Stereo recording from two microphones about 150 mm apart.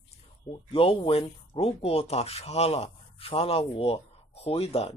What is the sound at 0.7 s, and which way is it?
Speech, 35° left (ahead or behind).